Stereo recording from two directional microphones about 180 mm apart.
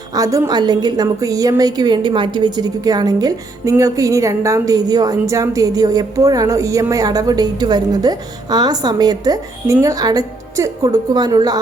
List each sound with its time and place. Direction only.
0.1 s a woman's voice: 20° right (ahead or behind)